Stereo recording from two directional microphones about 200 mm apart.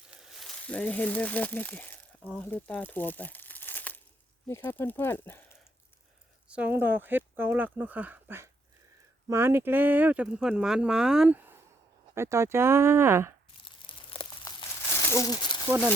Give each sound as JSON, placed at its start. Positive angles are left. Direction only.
{"t": 0.1, "sound": "crumpling", "side_deg": 0}
{"t": 2.4, "sound": "speech", "side_deg": 10}
{"t": 6.5, "sound": "speech", "side_deg": -10}
{"t": 13.7, "sound": "crumpling", "side_deg": 25}
{"t": 14.9, "sound": "crumpling", "side_deg": 15}